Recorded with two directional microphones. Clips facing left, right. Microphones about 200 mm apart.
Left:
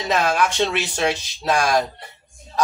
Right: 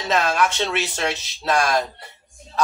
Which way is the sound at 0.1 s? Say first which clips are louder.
Even; 15° left (ahead or behind).